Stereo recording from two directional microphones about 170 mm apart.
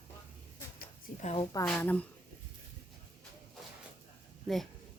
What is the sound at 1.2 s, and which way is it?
Speech, 40° left (ahead or behind).